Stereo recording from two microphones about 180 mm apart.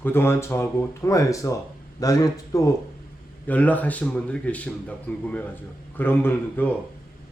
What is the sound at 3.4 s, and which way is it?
A man's voice, 10° left (ahead or behind).